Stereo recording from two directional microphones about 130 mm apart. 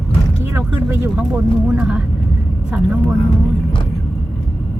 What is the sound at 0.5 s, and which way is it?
Speech, 15° right (ahead or behind).